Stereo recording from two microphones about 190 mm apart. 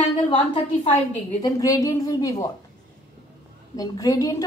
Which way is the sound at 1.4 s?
20° left (ahead or behind).